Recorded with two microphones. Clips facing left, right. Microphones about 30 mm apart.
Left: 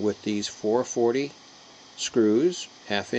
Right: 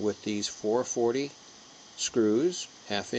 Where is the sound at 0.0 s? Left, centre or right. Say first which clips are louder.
Left 4 dB; centre.